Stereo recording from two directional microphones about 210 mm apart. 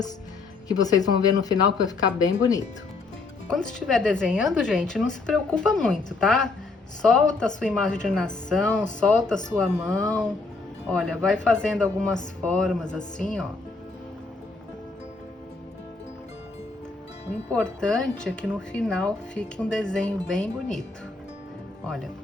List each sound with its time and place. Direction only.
0.7 s speech: 20° left (ahead or behind)
3.5 s speech: 5° left (ahead or behind)
17.5 s speech: 5° left (ahead or behind)
21.8 s speech: 5° left (ahead or behind)